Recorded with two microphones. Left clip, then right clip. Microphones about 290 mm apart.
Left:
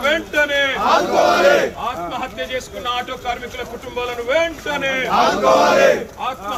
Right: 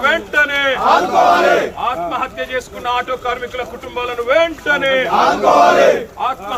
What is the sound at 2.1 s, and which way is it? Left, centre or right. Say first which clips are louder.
Speech: right 4 dB; centre.